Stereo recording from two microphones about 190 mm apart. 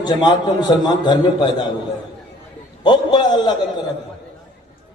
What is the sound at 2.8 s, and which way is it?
Speech, 20° left (ahead or behind).